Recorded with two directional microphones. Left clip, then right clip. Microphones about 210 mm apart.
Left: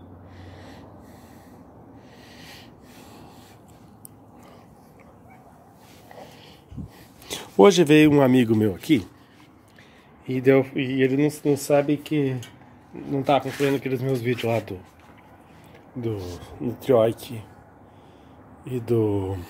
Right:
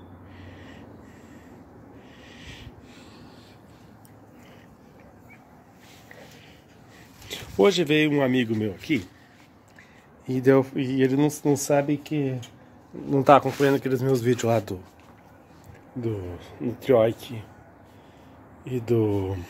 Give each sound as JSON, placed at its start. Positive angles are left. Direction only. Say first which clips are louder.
{"t": 2.3, "sound": "snort", "louder": "even", "side_deg": 30}
{"t": 7.2, "sound": "a man's voice", "louder": "left 5 dB", "side_deg": 30}
{"t": 10.2, "sound": "speech", "louder": "left 1 dB", "side_deg": -15}
{"t": 11.4, "sound": "speech", "louder": "left 3 dB", "side_deg": -30}
{"t": 11.9, "sound": "speech", "louder": "left 3 dB", "side_deg": -15}
{"t": 13.1, "sound": "speech", "louder": "right 5 dB", "side_deg": -40}
{"t": 13.6, "sound": "speech", "louder": "right 2 dB", "side_deg": -20}
{"t": 16.4, "sound": "speech", "louder": "even", "side_deg": 10}
{"t": 18.6, "sound": "speech", "louder": "left 1 dB", "side_deg": 0}